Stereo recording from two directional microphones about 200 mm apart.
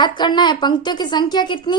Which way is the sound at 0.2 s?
20° left (ahead or behind).